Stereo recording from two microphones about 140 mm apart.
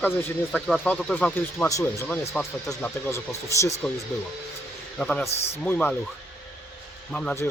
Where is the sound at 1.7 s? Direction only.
25° left (ahead or behind).